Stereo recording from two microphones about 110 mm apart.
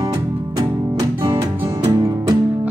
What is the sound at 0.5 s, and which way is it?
Music, 35° right (ahead or behind).